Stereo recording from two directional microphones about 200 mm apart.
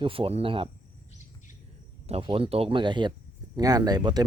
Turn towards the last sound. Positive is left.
turn(degrees=-20)  # may be behind; listen again after turning